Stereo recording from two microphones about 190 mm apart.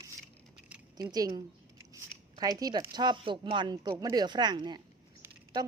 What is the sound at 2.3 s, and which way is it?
Speech, 20° right (ahead or behind).